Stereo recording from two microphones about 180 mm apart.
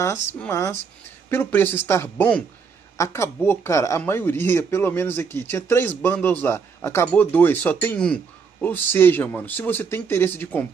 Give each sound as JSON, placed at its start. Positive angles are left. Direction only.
{"t": 0.0, "sound": "speech", "side_deg": 10}